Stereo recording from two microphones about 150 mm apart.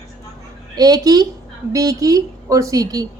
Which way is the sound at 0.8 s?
25° right (ahead or behind).